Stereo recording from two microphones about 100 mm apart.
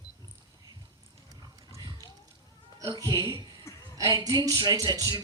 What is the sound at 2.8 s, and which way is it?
Speech, 40° right (ahead or behind).